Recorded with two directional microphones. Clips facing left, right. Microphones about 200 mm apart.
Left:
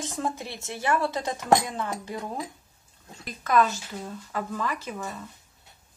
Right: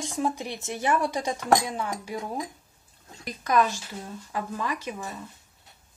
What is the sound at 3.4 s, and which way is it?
A woman's voice, 15° right (ahead or behind).